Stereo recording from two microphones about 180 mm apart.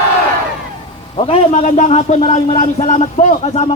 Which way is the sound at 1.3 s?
40° left (ahead or behind).